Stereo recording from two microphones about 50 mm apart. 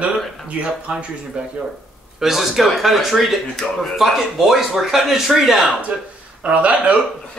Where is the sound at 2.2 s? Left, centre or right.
Centre.